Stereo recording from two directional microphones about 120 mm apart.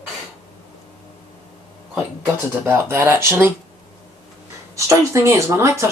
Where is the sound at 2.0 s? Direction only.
20° right (ahead or behind).